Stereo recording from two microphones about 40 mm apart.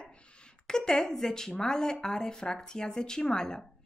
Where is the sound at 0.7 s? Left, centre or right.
Centre.